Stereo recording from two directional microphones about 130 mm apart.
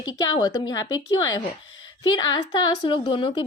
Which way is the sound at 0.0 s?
35° left (ahead or behind).